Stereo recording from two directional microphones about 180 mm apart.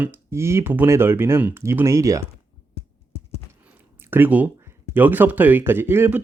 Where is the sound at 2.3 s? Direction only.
35° left (ahead or behind).